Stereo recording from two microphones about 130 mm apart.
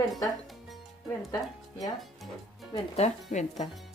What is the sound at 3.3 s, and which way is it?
Speech, 65° left (ahead or behind).